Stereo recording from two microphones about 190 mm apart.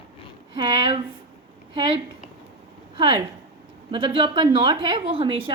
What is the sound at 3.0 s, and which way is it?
A woman's voice, 25° right (ahead or behind).